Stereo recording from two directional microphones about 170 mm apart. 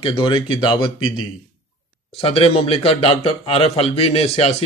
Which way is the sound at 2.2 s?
35° left (ahead or behind).